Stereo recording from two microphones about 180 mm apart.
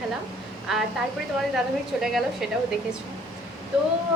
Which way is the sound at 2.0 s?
Centre (ahead or behind).